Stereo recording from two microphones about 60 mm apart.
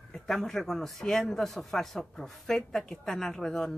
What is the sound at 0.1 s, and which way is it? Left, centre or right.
Speech, centre.